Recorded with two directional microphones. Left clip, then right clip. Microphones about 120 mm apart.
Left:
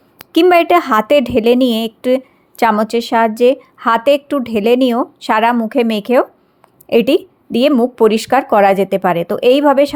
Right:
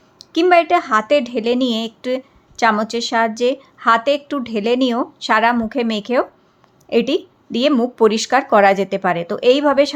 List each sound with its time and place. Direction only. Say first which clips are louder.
0.3 s a woman's voice: left 4 dB; 50° left (ahead or behind)
7.7 s a woman's voice: left 2 dB; 25° left (ahead or behind)